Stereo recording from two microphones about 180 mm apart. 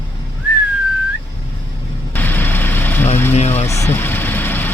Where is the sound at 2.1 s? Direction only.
10° left (ahead or behind).